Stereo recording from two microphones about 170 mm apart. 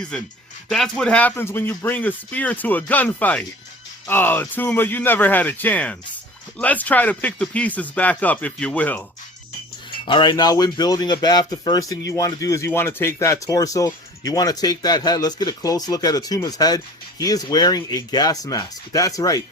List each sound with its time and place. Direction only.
0.1 s speech: 5° left (ahead or behind)
10.1 s speech: 25° left (ahead or behind)